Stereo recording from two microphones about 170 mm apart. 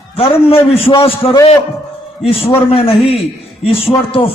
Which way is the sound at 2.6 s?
35° left (ahead or behind).